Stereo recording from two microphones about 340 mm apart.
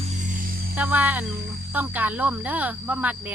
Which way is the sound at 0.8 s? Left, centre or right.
Centre.